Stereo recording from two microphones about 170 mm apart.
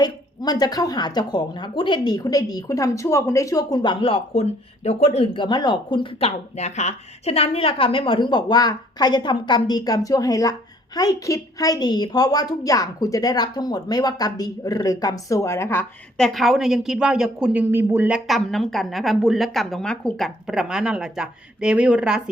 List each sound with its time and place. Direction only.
0.0 s a woman's voice: 25° left (ahead or behind); by 22.2 s 5° right (ahead or behind)